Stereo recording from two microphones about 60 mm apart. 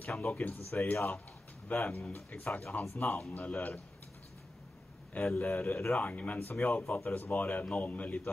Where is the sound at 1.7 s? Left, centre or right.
Centre.